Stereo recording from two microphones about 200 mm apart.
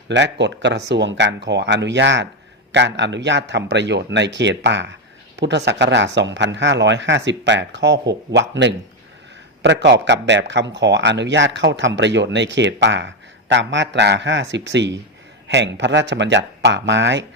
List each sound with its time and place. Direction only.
0.1 s speech: 60° right (ahead or behind)